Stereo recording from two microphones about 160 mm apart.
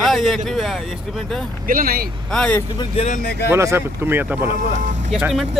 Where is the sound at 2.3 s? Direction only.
5° left (ahead or behind).